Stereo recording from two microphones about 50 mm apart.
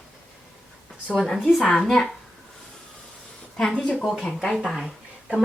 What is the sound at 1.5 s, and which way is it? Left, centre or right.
Speech, centre.